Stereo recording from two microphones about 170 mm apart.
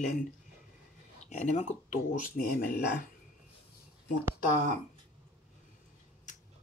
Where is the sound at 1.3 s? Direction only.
45° left (ahead or behind).